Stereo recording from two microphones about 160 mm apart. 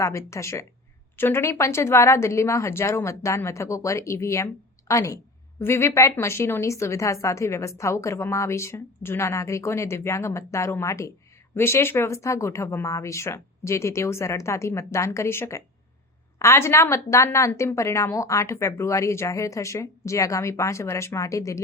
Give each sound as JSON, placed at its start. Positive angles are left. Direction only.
{"t": 0.0, "sound": "a woman's voice", "side_deg": 20}